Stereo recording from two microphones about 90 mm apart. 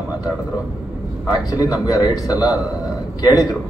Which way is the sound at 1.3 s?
45° left (ahead or behind).